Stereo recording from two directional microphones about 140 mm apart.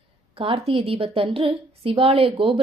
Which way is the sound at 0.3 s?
45° right (ahead or behind).